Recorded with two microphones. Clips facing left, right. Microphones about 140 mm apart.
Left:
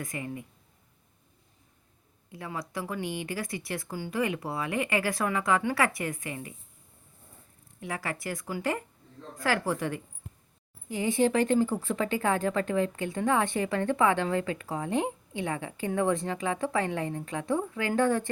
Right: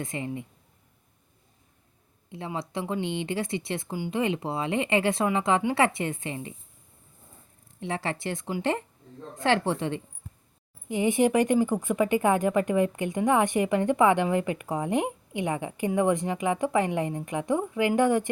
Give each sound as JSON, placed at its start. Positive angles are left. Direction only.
{"t": 0.0, "sound": "speech", "side_deg": -25}
{"t": 2.3, "sound": "speech", "side_deg": -25}
{"t": 7.8, "sound": "speech", "side_deg": -25}